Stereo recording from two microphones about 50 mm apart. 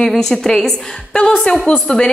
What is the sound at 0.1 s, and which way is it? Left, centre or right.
A woman's voice, centre.